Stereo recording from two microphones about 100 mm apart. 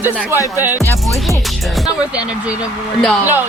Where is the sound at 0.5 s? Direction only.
35° left (ahead or behind).